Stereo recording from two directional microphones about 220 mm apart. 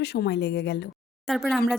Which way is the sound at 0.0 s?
50° left (ahead or behind).